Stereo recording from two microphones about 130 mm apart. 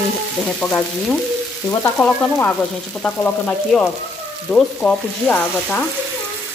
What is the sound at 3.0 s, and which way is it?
Frying, 10° left (ahead or behind).